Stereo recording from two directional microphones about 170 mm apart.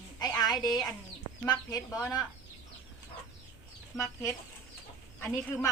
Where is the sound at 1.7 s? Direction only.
20° left (ahead or behind).